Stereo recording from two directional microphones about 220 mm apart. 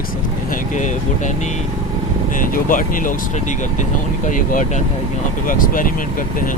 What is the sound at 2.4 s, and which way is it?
Speech, 40° left (ahead or behind).